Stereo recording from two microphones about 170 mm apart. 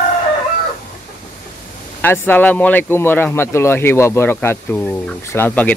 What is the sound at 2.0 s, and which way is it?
Speech, 10° left (ahead or behind).